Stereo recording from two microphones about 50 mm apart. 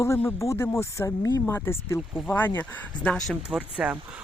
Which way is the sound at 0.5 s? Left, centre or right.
Left.